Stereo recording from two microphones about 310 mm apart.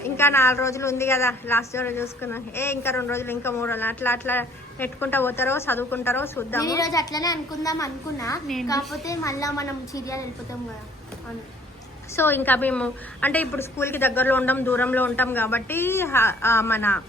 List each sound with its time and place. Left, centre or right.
0.0 s a man's voice: centre
12.1 s a man's voice: centre